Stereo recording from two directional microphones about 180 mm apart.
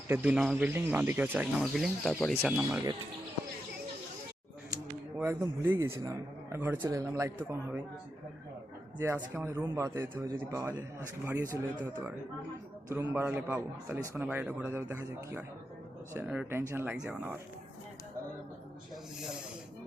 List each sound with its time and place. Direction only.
0.1 s a man's voice: 5° right (ahead or behind)
2.6 s a man's voice: 10° right (ahead or behind)
5.1 s a man's voice: 10° right (ahead or behind)
9.0 s a man's voice: 15° right (ahead or behind)